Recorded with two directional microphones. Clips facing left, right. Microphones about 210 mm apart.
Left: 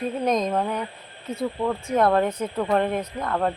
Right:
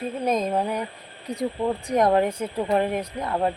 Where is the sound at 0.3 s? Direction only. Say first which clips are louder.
Even; 5° right (ahead or behind).